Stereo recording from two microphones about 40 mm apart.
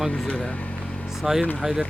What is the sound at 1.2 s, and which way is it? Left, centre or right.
Speech, centre.